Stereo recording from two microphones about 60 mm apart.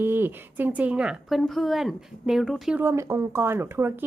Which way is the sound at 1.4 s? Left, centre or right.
Centre.